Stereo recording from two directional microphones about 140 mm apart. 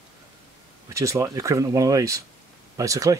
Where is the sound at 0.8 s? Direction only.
20° right (ahead or behind).